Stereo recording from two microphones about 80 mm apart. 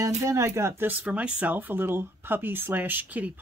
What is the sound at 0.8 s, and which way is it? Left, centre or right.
Speech, centre.